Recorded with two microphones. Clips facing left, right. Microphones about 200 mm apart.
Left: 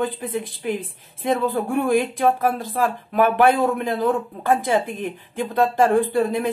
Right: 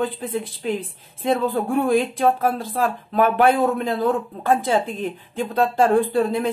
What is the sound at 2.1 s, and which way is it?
Speech, 15° left (ahead or behind).